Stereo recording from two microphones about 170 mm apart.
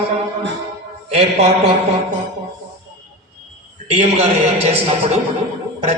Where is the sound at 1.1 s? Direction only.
35° right (ahead or behind).